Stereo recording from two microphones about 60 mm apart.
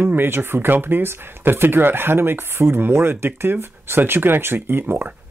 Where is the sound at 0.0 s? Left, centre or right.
Right.